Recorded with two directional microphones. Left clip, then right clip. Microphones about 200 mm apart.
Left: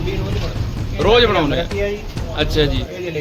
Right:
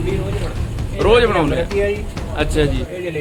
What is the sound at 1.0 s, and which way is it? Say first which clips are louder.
A man's voice: even; centre (ahead or behind).